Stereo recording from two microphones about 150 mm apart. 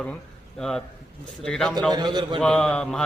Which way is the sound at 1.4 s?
5° left (ahead or behind).